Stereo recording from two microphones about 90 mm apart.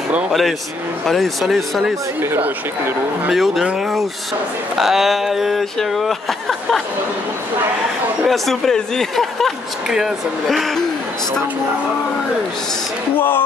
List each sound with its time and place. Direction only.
0.3 s speech: centre (ahead or behind)
2.2 s speech: 25° right (ahead or behind)
3.3 s speech: centre (ahead or behind)
4.7 s speech: 5° right (ahead or behind)
8.3 s speech: 5° left (ahead or behind)